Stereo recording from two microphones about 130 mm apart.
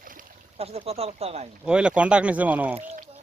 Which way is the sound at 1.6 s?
5° right (ahead or behind).